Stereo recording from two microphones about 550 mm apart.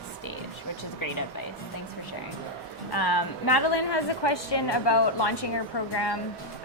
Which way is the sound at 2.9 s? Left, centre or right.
Left.